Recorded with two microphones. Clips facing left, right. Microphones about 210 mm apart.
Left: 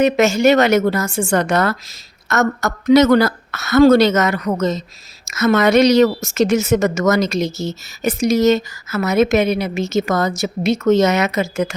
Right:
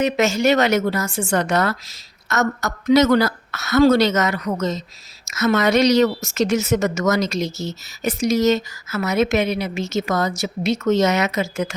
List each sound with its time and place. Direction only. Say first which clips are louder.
0.0 s a woman's voice: left 5 dB; 50° left (ahead or behind)